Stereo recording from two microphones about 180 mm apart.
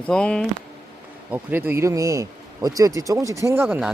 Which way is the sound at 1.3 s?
10° right (ahead or behind).